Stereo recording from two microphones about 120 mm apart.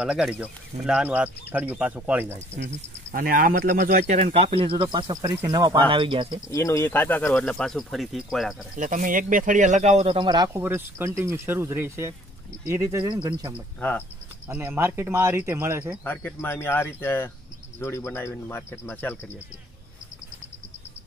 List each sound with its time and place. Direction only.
0.0 s speech: 5° right (ahead or behind)
3.8 s speech: 85° right
4.3 s speech: 50° right (ahead or behind); by 5.8 s 30° right (ahead or behind)
5.8 s speech: 45° right (ahead or behind)
6.5 s speech: 25° left (ahead or behind)
7.5 s speech: 5° left (ahead or behind)
8.7 s speech: 90° right; by 10.1 s 65° right (ahead or behind)
10.1 s speech: 40° right (ahead or behind)
10.5 s speech: 20° right (ahead or behind)
13.7 s speech: 10° left (ahead or behind)
14.5 s speech: 20° right (ahead or behind)
16.0 s speech: 15° left (ahead or behind)